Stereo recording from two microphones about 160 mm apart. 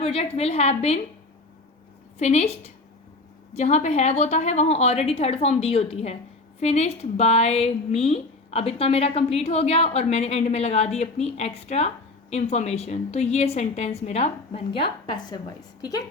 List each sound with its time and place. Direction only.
0.0 s a woman's voice: 40° left (ahead or behind)
2.1 s a woman's voice: 40° left (ahead or behind); by 16.0 s 25° left (ahead or behind)